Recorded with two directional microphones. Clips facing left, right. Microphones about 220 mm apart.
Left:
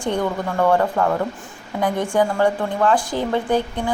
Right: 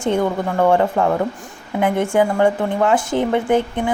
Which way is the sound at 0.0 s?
25° right (ahead or behind).